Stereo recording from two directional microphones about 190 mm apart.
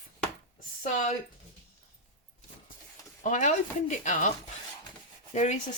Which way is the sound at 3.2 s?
40° left (ahead or behind).